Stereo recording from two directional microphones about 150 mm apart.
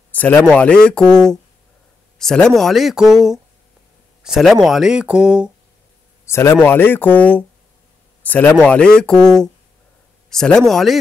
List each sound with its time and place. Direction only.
0.1 s a sound: 10° left (ahead or behind)
0.5 s speech: 5° left (ahead or behind)
4.2 s speech: centre (ahead or behind)
6.2 s speech: 15° left (ahead or behind); by 11.0 s centre (ahead or behind)